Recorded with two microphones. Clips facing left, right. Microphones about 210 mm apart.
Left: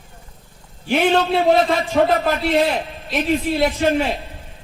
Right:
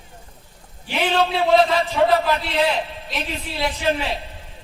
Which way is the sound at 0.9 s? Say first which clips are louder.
Left 4 dB; 50° left (ahead or behind).